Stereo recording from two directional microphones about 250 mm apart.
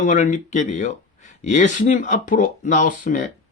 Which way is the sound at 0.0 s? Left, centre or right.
Left.